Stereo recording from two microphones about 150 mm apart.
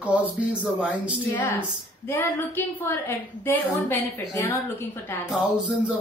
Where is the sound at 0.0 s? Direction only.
10° right (ahead or behind).